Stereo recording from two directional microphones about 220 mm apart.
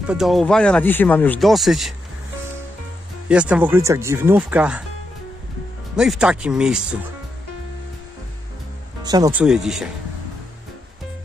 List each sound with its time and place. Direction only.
0.0 s speech: 5° right (ahead or behind)
3.3 s speech: 5° right (ahead or behind)
5.9 s speech: 5° right (ahead or behind)
9.0 s speech: 20° right (ahead or behind)
9.3 s speech: 5° right (ahead or behind)